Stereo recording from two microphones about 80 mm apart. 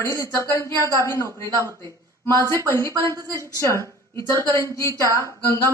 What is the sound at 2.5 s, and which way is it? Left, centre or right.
A woman's voice, left.